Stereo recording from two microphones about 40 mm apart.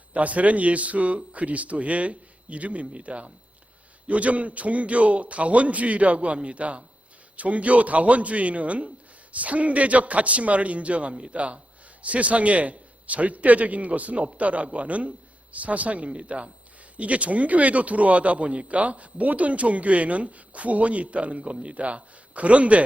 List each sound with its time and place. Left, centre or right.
0.1 s speech: right